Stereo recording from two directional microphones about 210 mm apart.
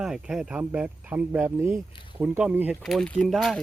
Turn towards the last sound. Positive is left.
turn(degrees=0)  # may be behind; listen again after turning